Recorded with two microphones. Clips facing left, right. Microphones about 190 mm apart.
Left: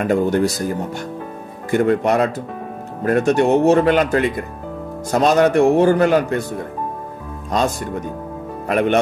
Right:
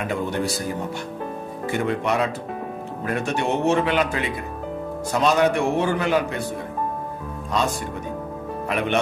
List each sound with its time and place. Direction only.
0.0 s a man's voice: 45° left (ahead or behind)
1.7 s a man's voice: 45° left (ahead or behind)
8.6 s speech: 45° left (ahead or behind)